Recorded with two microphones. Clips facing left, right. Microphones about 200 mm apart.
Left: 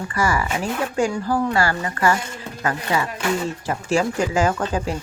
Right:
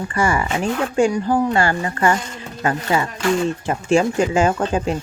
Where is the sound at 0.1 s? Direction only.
25° right (ahead or behind).